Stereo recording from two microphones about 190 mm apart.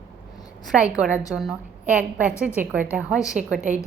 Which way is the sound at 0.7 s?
5° right (ahead or behind).